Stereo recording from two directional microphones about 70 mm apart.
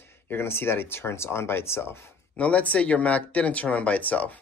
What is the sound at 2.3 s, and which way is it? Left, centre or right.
Speech, centre.